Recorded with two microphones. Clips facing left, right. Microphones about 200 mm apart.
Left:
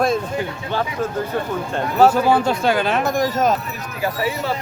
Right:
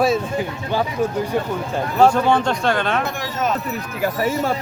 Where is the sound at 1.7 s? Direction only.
5° left (ahead or behind).